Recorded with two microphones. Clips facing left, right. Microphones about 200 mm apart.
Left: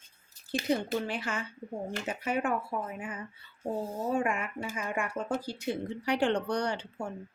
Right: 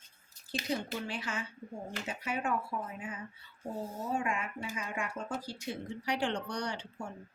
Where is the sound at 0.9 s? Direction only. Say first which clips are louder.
Left 6 dB; 55° left (ahead or behind).